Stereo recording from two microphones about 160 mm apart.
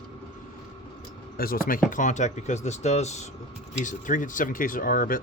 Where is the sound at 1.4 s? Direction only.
65° left (ahead or behind).